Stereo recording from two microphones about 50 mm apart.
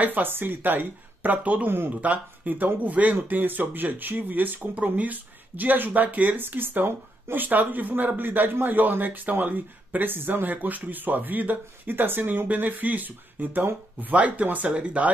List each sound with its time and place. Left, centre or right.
0.0 s speech: right